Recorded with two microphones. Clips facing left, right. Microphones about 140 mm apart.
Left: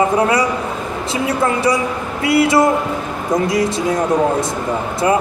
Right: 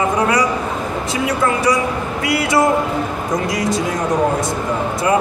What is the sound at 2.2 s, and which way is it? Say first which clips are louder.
Speech: left 6 dB; 30° left (ahead or behind).